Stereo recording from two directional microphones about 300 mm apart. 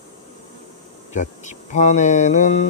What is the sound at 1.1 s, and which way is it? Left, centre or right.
Insect, left.